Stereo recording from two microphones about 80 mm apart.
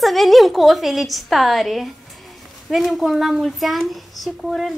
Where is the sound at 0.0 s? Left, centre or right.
Centre.